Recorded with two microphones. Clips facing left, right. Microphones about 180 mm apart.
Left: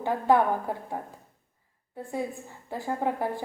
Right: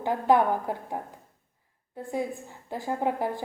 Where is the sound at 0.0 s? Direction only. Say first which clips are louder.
Even; 15° right (ahead or behind).